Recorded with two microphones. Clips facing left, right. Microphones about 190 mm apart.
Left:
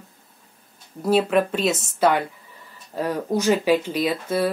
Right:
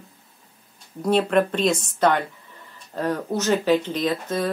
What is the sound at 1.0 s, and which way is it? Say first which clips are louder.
Speech: even; 5° left (ahead or behind).